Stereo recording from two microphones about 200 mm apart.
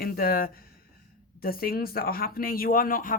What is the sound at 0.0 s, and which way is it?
Speech, 50° left (ahead or behind).